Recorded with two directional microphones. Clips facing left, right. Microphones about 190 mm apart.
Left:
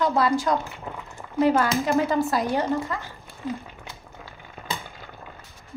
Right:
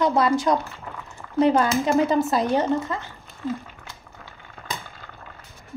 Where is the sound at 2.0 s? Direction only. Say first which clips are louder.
Right 2 dB; 20° right (ahead or behind).